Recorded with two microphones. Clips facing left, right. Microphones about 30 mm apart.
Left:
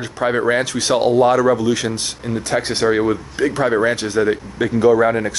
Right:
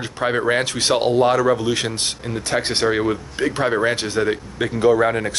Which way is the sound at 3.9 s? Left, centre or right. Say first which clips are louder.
Left 3 dB; right.